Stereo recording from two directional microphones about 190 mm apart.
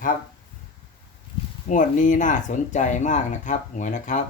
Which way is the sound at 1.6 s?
40° left (ahead or behind).